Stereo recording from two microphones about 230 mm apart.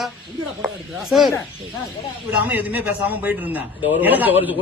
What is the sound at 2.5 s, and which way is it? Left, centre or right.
A man's voice, centre.